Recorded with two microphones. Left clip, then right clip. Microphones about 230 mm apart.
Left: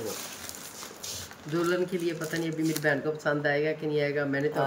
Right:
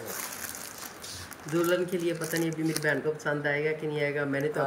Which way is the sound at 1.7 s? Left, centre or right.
Centre.